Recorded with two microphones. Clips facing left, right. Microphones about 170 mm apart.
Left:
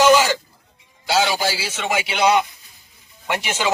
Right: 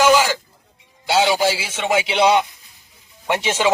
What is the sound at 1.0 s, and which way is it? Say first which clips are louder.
A man's voice: right 3 dB; 25° right (ahead or behind).